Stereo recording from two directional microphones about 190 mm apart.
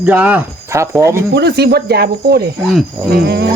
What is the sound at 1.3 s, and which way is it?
Speech, 60° right (ahead or behind).